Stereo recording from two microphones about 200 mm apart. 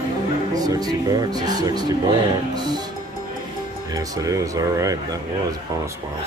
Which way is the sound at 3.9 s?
15° right (ahead or behind).